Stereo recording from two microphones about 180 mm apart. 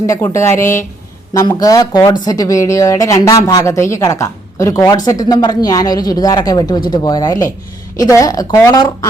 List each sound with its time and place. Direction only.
0.1 s speech: 15° left (ahead or behind)